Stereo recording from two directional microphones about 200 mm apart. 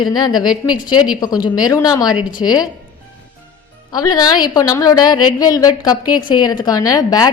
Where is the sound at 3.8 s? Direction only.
20° left (ahead or behind).